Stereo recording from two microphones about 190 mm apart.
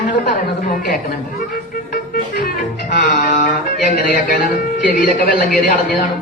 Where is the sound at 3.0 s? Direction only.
45° left (ahead or behind).